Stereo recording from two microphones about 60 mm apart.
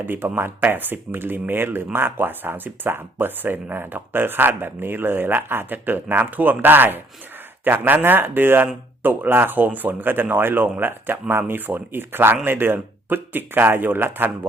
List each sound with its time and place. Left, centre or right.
0.0 s speech: right